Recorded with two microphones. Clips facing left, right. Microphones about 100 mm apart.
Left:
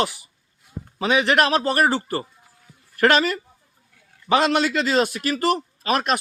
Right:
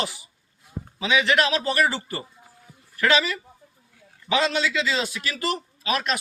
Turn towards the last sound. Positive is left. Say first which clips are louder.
# left 4 dB
turn(degrees=45)  # may be behind; listen again after turning